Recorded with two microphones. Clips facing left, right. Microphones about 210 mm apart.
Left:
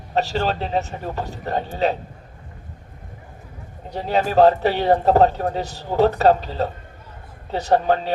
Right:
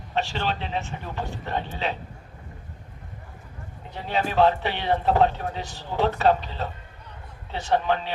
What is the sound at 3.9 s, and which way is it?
A man's voice, 40° left (ahead or behind).